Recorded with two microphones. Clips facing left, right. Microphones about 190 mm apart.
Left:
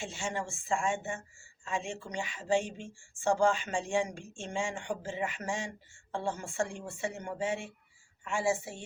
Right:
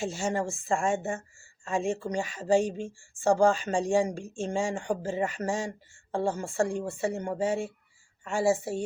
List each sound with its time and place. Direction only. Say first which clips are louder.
0.0 s speech: right 7 dB; 40° right (ahead or behind)